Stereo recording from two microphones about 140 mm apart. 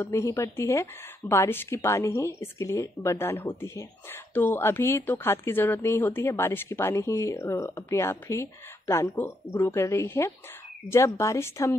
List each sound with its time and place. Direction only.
0.0 s a woman's voice: 20° left (ahead or behind)